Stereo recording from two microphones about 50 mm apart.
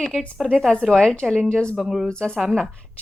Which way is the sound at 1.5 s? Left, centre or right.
Centre.